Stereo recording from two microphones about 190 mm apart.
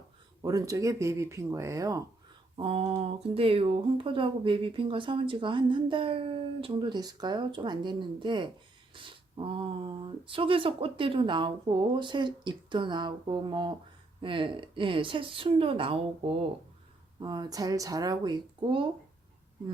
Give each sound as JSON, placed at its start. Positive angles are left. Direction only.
{"t": 0.4, "sound": "speech", "side_deg": -15}
{"t": 2.6, "sound": "speech", "side_deg": -30}